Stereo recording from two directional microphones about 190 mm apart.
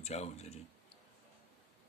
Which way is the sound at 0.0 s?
35° left (ahead or behind).